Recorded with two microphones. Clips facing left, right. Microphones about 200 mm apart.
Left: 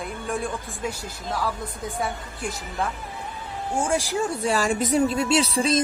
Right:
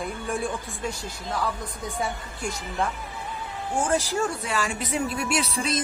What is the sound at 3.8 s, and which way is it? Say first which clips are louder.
Speech: even; 10° left (ahead or behind).